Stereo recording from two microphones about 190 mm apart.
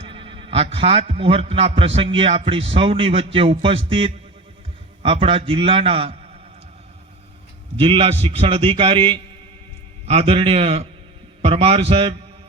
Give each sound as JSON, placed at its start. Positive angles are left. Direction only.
{"t": 0.0, "sound": "a man's voice", "side_deg": -30}
{"t": 7.8, "sound": "a man's voice", "side_deg": -30}